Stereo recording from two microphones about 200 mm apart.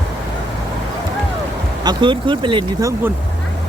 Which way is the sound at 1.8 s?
20° right (ahead or behind).